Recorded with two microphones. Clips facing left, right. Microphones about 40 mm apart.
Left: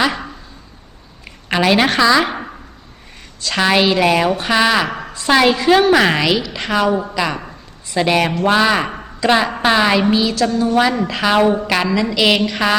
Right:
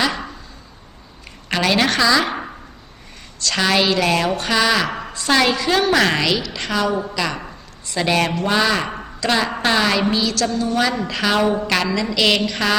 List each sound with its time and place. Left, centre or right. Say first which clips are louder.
0.0 s a sound: left 3 dB; centre
1.5 s a woman's voice: left 4 dB; centre
3.4 s a woman's voice: left 3 dB; centre
7.3 s a man's voice: left 2 dB; centre